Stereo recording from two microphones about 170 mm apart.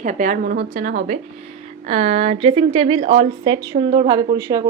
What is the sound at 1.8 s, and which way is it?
A woman's voice, 40° right (ahead or behind).